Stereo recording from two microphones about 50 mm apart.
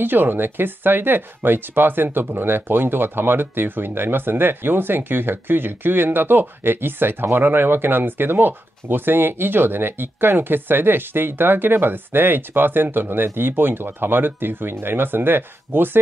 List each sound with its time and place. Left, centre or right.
0.0 s speech: right